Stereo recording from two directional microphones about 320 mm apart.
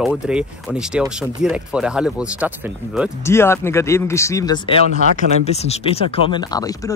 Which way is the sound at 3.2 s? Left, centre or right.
Centre.